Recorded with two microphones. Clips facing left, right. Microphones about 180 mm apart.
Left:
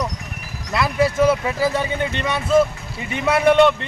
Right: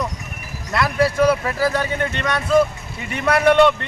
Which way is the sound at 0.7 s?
Centre (ahead or behind).